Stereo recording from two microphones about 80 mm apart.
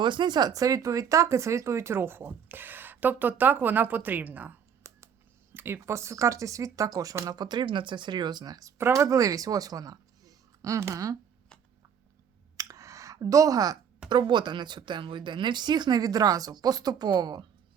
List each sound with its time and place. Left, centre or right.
0.0 s speech: right
4.8 s computer keyboard: right
5.5 s speech: right
8.8 s speech: right
12.5 s a sound: right
14.1 s speech: right